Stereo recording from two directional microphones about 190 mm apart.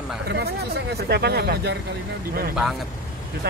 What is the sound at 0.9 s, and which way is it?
Speech, 55° right (ahead or behind).